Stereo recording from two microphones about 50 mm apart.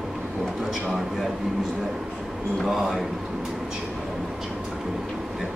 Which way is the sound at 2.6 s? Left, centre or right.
Centre.